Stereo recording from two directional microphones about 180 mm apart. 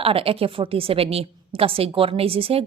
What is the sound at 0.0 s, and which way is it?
A woman's voice, 30° right (ahead or behind).